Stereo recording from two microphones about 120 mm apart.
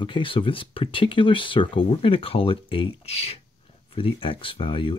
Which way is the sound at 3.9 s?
45° left (ahead or behind).